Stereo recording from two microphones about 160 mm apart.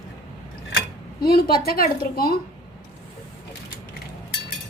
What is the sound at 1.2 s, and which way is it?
A woman's voice, 75° left (ahead or behind).